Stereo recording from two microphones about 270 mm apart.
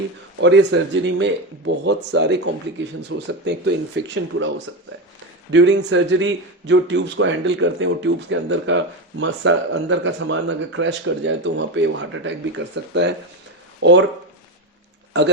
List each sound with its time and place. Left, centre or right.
0.3 s speech: right